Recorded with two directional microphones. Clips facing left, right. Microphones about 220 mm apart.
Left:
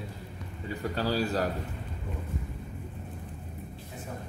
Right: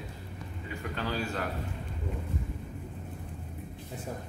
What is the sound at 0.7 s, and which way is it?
Speech, 35° left (ahead or behind).